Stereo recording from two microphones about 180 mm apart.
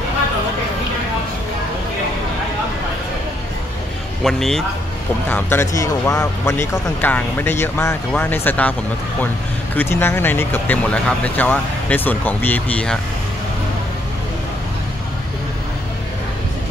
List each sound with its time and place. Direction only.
4.2 s speech: centre (ahead or behind)
5.3 s speech: 15° left (ahead or behind)
9.8 s speech: 10° left (ahead or behind)